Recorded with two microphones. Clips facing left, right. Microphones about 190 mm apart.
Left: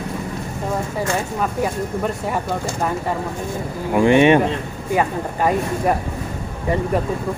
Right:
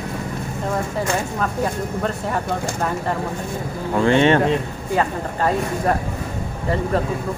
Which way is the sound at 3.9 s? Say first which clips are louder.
Left 3 dB; 15° left (ahead or behind).